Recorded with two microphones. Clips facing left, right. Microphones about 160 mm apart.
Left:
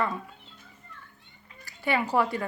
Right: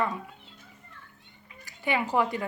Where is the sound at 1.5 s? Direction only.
15° right (ahead or behind).